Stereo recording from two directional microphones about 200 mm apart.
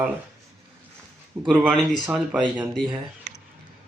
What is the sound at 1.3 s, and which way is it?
Speech, centre (ahead or behind).